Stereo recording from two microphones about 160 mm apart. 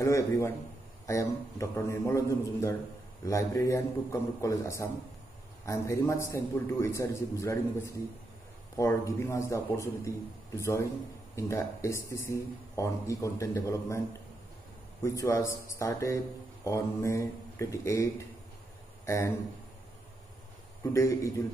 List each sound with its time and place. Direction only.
0.0 s a man's voice: 20° left (ahead or behind)
15.0 s a man's voice: 15° left (ahead or behind)
19.0 s speech: 15° left (ahead or behind)
20.9 s a man's voice: 20° left (ahead or behind)